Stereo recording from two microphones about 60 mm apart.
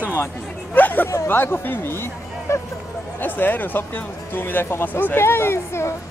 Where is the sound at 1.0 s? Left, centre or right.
Left.